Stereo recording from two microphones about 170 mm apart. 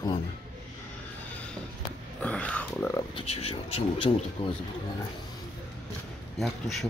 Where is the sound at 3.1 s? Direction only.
35° left (ahead or behind).